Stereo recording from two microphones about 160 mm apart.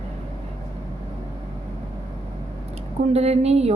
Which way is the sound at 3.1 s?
40° right (ahead or behind).